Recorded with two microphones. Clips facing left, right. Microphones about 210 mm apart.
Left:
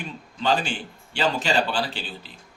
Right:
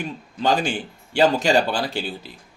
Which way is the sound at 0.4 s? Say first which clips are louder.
Right 3 dB; 45° right (ahead or behind).